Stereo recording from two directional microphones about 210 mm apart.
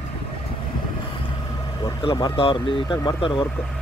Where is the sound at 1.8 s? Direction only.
20° left (ahead or behind).